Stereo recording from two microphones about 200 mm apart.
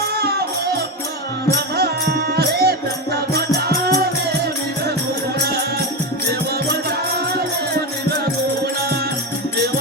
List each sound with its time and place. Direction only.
1.7 s music: 50° right (ahead or behind)
8.2 s music: 50° right (ahead or behind)